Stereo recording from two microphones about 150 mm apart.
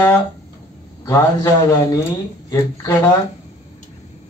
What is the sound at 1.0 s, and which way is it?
Speech, 20° left (ahead or behind).